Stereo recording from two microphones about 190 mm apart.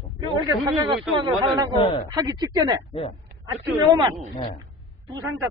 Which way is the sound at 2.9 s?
30° left (ahead or behind).